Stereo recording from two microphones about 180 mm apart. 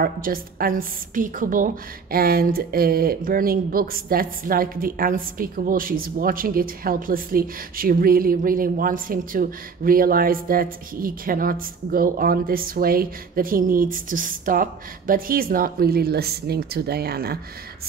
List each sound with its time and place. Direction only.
0.0 s a woman's voice: 55° right (ahead or behind)